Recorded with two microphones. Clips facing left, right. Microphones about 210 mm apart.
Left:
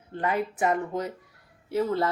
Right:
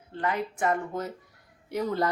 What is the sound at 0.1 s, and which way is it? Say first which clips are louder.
A woman's voice: left 2 dB; 15° left (ahead or behind).